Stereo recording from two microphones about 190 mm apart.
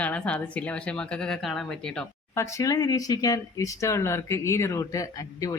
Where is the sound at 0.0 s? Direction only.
5° left (ahead or behind).